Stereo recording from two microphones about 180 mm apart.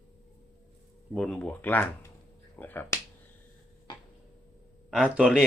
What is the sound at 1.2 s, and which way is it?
Speech, 5° left (ahead or behind).